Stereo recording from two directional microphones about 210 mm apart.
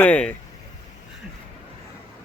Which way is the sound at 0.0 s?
5° left (ahead or behind).